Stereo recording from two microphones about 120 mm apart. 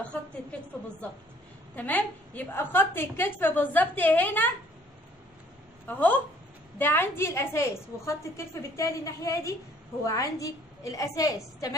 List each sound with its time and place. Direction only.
0.5 s a woman's voice: 10° left (ahead or behind)
1.8 s a woman's voice: 15° left (ahead or behind)
5.9 s a woman's voice: 15° left (ahead or behind); by 11.7 s 30° left (ahead or behind)